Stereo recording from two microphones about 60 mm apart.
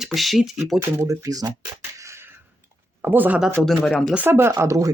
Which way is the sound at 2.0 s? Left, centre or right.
Right.